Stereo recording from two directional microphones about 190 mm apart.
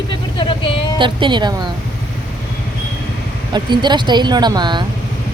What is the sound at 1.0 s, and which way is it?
Speech, 25° right (ahead or behind).